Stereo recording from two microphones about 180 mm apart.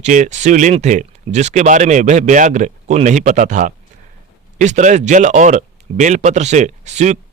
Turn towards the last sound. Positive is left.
turn(degrees=-40)  # may be behind; listen again after turning